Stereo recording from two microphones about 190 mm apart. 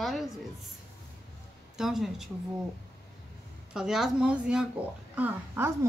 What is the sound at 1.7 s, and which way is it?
Speech, centre (ahead or behind).